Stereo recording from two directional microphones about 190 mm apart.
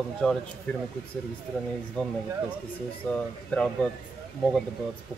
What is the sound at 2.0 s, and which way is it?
Speech, 5° left (ahead or behind).